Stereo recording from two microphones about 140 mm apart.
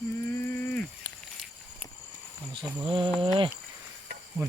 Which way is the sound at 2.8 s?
35° right (ahead or behind).